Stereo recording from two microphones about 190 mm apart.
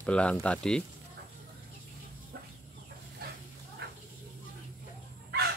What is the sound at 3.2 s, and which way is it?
Dog, 55° right (ahead or behind).